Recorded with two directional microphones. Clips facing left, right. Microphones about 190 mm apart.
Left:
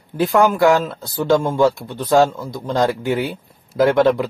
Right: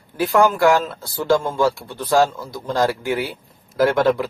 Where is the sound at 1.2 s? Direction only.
15° left (ahead or behind).